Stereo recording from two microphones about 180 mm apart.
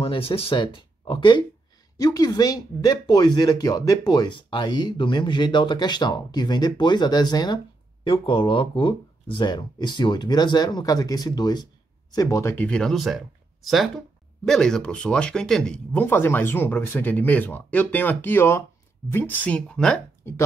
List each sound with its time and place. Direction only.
0.0 s speech: 30° left (ahead or behind); by 20.3 s 5° left (ahead or behind)